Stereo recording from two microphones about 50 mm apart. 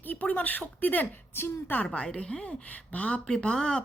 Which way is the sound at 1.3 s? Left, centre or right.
Left.